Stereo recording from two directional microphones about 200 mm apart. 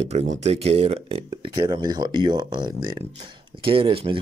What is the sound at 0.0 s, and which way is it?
Speech, 30° right (ahead or behind).